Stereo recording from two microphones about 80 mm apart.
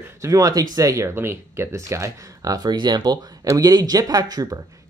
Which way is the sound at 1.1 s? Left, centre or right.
Right.